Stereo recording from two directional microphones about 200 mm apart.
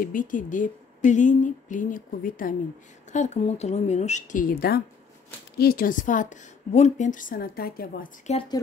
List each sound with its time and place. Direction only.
0.0 s a woman's voice: 45° left (ahead or behind)
8.3 s speech: 25° left (ahead or behind)